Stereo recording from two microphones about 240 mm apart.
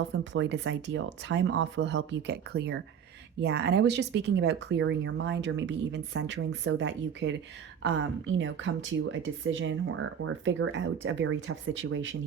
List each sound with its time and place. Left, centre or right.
0.1 s a woman's voice: right